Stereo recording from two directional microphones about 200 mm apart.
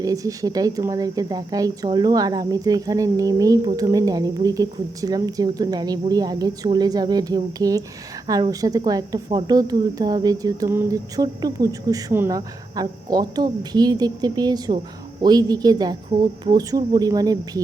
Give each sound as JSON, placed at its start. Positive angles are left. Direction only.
{"t": 0.0, "sound": "speech", "side_deg": -15}